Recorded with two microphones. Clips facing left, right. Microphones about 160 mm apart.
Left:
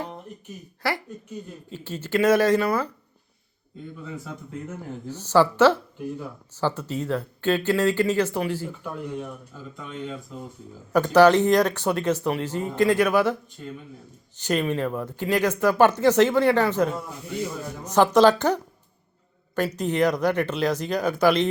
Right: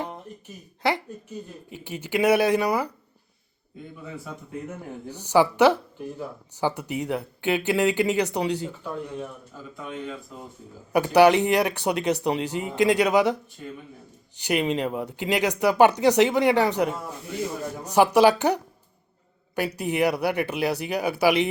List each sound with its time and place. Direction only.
0.8 s speech: 20° right (ahead or behind)
5.0 s speech: 15° right (ahead or behind)
10.9 s speech: 15° right (ahead or behind)
14.3 s speech: 15° right (ahead or behind)